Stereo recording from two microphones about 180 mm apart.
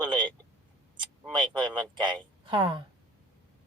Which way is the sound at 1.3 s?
25° right (ahead or behind).